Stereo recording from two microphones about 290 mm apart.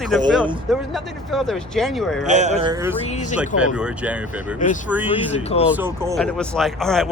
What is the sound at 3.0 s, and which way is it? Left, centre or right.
Speech, left.